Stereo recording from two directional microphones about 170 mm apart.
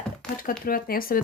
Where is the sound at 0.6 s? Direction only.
60° left (ahead or behind).